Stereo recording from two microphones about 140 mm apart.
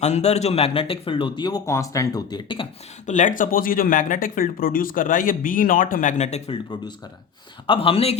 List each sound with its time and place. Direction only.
0.0 s speech: 50° left (ahead or behind); by 2.6 s 35° left (ahead or behind)
3.1 s speech: 65° left (ahead or behind)
7.7 s speech: 40° left (ahead or behind)